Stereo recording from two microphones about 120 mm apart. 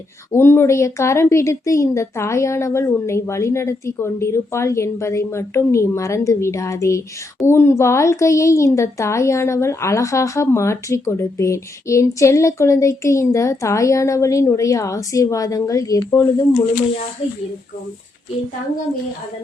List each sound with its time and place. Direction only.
0.3 s speech: 20° left (ahead or behind)